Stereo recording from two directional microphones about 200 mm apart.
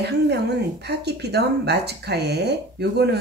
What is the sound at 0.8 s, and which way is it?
Speech, 55° right (ahead or behind).